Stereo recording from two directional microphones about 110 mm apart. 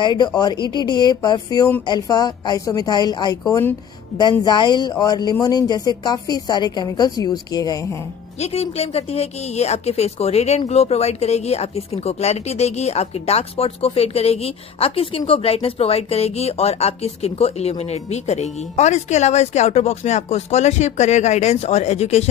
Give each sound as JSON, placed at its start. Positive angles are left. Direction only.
{"t": 0.0, "sound": "a woman's voice", "side_deg": 40}
{"t": 8.4, "sound": "speech", "side_deg": 65}